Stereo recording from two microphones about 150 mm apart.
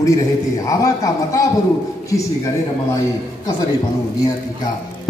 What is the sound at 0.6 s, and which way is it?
Speech, 20° left (ahead or behind).